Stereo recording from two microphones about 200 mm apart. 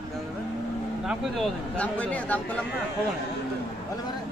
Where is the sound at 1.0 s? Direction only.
Centre (ahead or behind).